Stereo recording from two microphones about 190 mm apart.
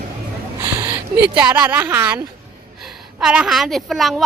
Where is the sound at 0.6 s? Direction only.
15° right (ahead or behind).